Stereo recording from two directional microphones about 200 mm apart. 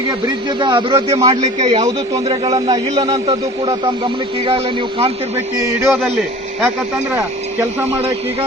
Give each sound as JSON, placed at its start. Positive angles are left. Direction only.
{"t": 0.6, "sound": "a man's voice", "side_deg": -25}
{"t": 5.5, "sound": "a man's voice", "side_deg": -15}